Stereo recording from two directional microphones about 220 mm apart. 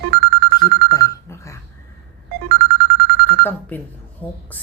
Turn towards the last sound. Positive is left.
turn(degrees=5)  # may be behind; listen again after turning